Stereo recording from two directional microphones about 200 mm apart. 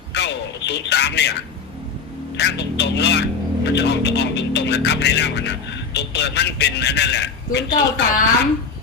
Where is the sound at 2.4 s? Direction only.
60° left (ahead or behind).